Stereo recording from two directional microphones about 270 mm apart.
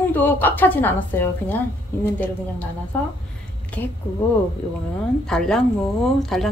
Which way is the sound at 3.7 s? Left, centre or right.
Centre.